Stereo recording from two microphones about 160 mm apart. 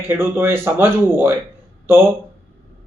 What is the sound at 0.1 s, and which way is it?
A man's voice, 15° right (ahead or behind).